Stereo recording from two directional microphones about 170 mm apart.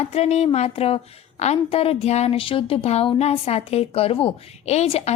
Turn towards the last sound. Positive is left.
turn(degrees=40)  # may be behind; listen again after turning